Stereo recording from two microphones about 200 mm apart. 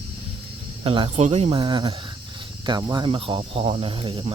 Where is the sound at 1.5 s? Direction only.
20° right (ahead or behind).